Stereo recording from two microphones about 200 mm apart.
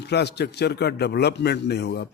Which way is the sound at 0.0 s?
55° left (ahead or behind).